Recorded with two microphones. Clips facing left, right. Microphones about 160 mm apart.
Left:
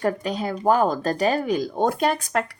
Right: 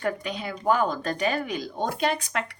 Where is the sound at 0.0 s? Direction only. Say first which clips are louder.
Left 5 dB; 40° left (ahead or behind).